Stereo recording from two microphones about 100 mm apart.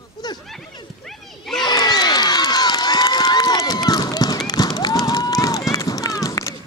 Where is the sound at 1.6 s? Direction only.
45° left (ahead or behind).